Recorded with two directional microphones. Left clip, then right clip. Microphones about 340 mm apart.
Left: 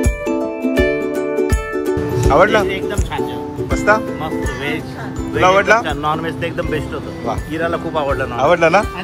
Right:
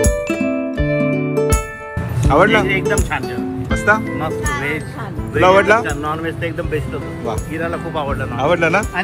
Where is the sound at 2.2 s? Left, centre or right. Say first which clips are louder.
Even; centre.